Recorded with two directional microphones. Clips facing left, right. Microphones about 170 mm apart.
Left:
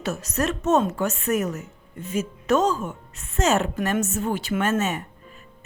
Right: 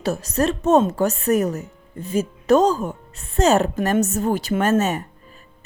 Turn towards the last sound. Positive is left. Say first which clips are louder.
# right 4 dB
turn(degrees=-35)  # may be behind; listen again after turning